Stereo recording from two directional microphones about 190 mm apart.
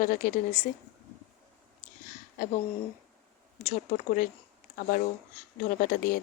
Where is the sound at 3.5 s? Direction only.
35° left (ahead or behind).